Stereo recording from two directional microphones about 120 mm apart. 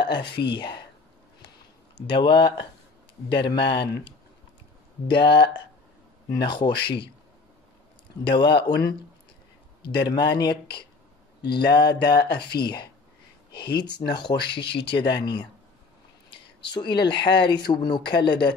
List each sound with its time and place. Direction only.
0.0 s speech: 40° left (ahead or behind)
2.0 s speech: 40° left (ahead or behind)
5.0 s speech: 40° left (ahead or behind)
6.4 s speech: 40° left (ahead or behind)
8.3 s speech: 40° left (ahead or behind)